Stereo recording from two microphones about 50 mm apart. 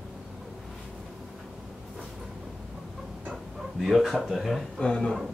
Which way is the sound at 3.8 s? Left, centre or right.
Centre.